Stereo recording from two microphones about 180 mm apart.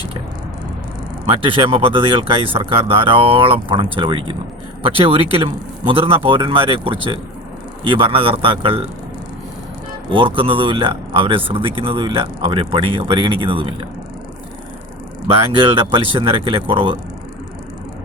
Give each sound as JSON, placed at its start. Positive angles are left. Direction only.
{"t": 1.3, "sound": "a man's voice", "side_deg": -30}
{"t": 10.1, "sound": "speech", "side_deg": -30}
{"t": 15.3, "sound": "speech", "side_deg": -30}